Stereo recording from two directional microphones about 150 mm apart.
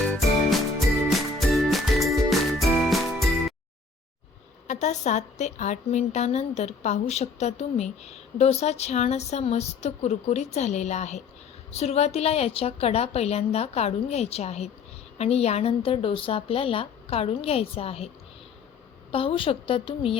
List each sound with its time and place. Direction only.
1.4 s music: centre (ahead or behind)
4.7 s a woman's voice: 50° left (ahead or behind)
19.1 s speech: 40° left (ahead or behind)